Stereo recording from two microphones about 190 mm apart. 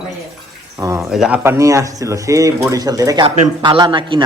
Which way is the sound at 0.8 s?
15° right (ahead or behind).